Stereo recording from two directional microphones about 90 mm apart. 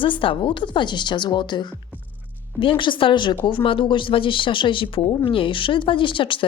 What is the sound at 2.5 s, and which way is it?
A woman's voice, 70° left (ahead or behind).